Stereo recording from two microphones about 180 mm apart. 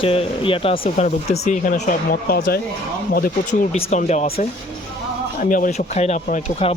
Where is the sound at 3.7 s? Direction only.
35° left (ahead or behind).